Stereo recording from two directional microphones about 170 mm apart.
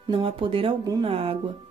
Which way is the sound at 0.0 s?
30° right (ahead or behind).